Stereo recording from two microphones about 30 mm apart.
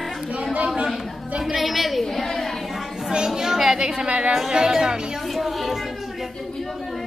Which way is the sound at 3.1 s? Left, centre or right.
Centre.